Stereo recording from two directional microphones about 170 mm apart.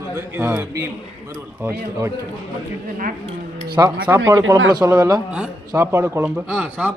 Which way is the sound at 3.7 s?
20° right (ahead or behind).